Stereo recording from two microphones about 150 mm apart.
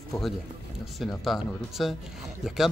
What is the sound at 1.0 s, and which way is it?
Speech, centre (ahead or behind).